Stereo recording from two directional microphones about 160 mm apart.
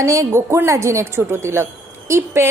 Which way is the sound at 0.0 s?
20° right (ahead or behind).